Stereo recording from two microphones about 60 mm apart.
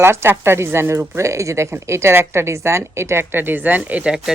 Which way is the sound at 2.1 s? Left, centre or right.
Right.